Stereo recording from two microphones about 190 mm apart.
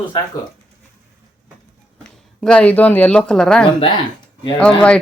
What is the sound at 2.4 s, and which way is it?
Speech, 5° left (ahead or behind).